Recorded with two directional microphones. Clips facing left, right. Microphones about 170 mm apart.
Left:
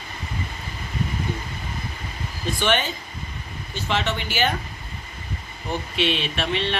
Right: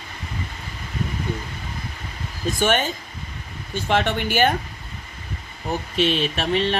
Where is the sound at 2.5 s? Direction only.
45° right (ahead or behind).